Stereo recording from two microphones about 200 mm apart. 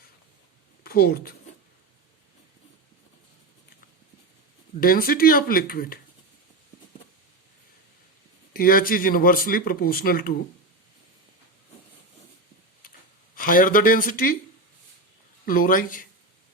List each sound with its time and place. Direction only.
0.9 s speech: 50° left (ahead or behind)
4.8 s speech: 45° left (ahead or behind)
8.5 s speech: 45° left (ahead or behind)
13.3 s speech: 45° left (ahead or behind)
15.4 s speech: 45° left (ahead or behind)